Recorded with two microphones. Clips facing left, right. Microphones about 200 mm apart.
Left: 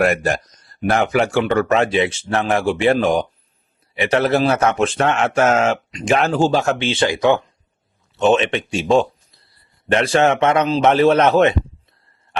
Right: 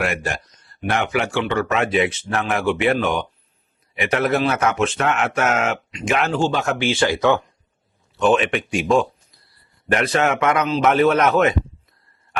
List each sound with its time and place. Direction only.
0.0 s a man's voice: 40° left (ahead or behind)